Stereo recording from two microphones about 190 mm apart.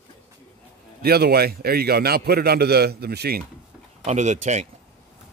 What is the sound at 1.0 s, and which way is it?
A man's voice, 55° right (ahead or behind).